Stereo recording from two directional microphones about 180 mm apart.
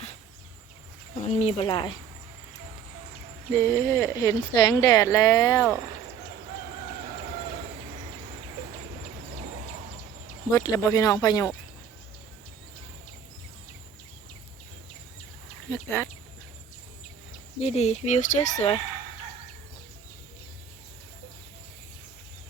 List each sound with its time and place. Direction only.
1.3 s speech: 35° left (ahead or behind)
3.5 s speech: 15° left (ahead or behind)
10.5 s speech: 20° left (ahead or behind)
15.7 s speech: 10° left (ahead or behind)
17.6 s speech: 35° left (ahead or behind)